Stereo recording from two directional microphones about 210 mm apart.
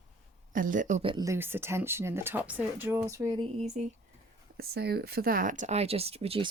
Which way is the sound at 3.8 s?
35° right (ahead or behind).